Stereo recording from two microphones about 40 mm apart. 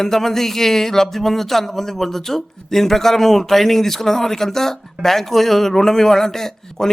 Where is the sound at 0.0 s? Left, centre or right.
Centre.